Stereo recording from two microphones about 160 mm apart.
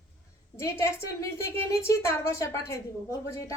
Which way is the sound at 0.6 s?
20° left (ahead or behind).